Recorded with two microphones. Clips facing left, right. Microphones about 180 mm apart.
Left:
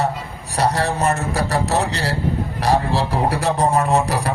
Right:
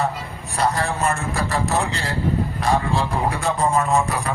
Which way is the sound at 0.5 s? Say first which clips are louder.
Left 3 dB; 35° left (ahead or behind).